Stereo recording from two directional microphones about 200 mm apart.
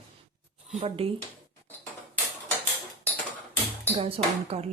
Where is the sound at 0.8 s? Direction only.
30° right (ahead or behind).